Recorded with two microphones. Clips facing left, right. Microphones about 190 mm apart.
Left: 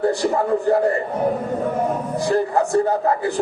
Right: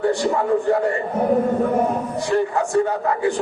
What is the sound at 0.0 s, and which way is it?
Speech, 35° left (ahead or behind).